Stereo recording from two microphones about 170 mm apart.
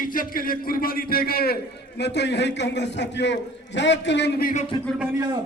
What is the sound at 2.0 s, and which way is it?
A man's voice, 85° left.